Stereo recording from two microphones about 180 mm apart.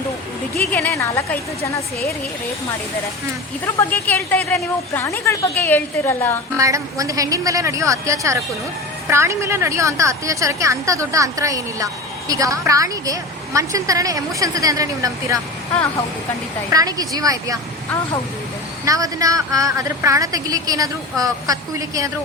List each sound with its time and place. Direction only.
0.7 s a woman's voice: 10° left (ahead or behind)
3.8 s a woman's voice: 10° left (ahead or behind)
6.6 s a woman's voice: 15° right (ahead or behind)
16.7 s a woman's voice: 20° right (ahead or behind)
18.9 s a woman's voice: 20° right (ahead or behind)